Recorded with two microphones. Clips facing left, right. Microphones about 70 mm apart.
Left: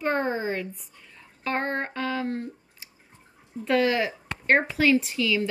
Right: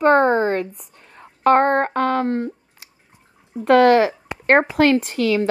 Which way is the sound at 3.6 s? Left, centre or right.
Right.